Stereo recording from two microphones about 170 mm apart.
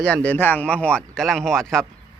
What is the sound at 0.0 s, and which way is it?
Speech, 5° left (ahead or behind).